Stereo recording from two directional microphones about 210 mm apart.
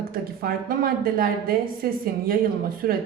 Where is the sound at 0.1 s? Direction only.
45° right (ahead or behind).